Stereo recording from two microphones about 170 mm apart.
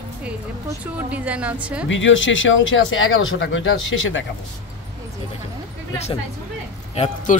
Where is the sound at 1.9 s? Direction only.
90° left.